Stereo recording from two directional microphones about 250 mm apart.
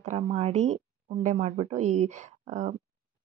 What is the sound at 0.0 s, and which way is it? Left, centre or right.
Speech, right.